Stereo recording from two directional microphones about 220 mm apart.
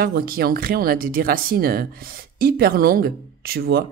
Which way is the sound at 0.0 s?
45° right (ahead or behind).